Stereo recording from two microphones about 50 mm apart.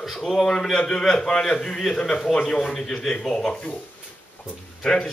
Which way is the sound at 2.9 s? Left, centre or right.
Centre.